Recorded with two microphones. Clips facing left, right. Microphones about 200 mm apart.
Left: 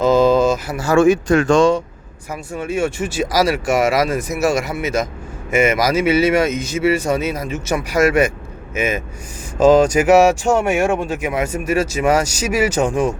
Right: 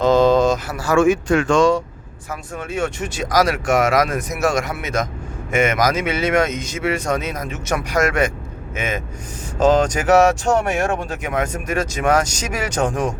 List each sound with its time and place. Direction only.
0.0 s a sound: 5° left (ahead or behind)
0.8 s speech: 30° left (ahead or behind)
2.3 s speech: 10° left (ahead or behind)